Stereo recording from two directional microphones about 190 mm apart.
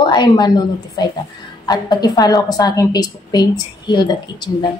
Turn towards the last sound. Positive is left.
turn(degrees=25)  # may be behind; listen again after turning